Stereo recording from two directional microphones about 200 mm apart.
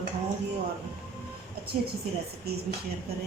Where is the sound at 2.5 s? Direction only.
50° right (ahead or behind).